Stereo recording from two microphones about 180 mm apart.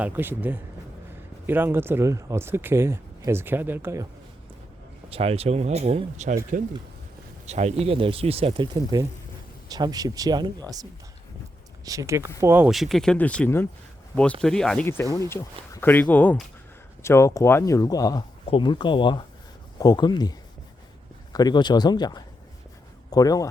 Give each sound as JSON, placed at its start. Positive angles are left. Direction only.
{"t": 0.0, "sound": "speech", "side_deg": -10}
{"t": 5.0, "sound": "speech", "side_deg": -35}
{"t": 11.9, "sound": "speech", "side_deg": -15}
{"t": 15.1, "sound": "speech", "side_deg": 15}
{"t": 21.3, "sound": "speech", "side_deg": 25}